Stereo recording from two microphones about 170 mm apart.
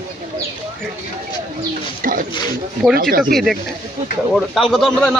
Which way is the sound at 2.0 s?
55° right (ahead or behind).